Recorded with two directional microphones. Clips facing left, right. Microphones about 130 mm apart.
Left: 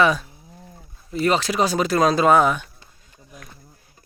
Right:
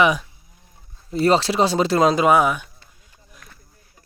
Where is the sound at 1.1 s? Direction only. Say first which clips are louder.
Right 3 dB; 30° right (ahead or behind).